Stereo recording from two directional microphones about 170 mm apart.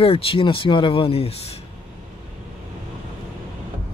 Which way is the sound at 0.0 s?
35° left (ahead or behind).